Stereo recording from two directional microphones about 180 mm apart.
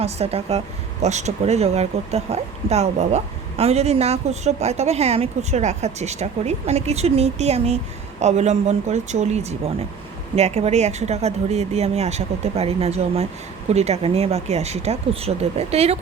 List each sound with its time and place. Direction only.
0.0 s speech: 35° right (ahead or behind)